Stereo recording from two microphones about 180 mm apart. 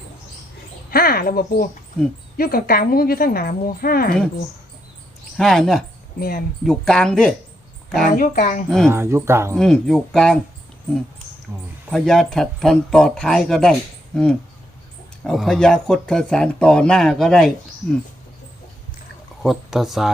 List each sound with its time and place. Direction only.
0.9 s a woman's voice: 55° left (ahead or behind)
5.4 s speech: centre (ahead or behind)
6.1 s a woman's voice: 55° left (ahead or behind)
6.7 s speech: 5° left (ahead or behind)
8.1 s speech: 45° left (ahead or behind)
8.9 s speech: 15° right (ahead or behind)
9.6 s speech: 5° left (ahead or behind)
11.5 s speech: 15° right (ahead or behind)
11.9 s speech: centre (ahead or behind)
19.4 s speech: centre (ahead or behind)